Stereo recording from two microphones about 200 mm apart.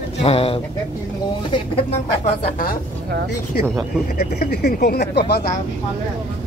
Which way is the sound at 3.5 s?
50° left (ahead or behind).